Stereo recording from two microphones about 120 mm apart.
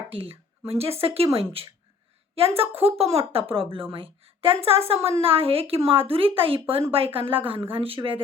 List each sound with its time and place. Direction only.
0.1 s a woman's voice: 50° right (ahead or behind)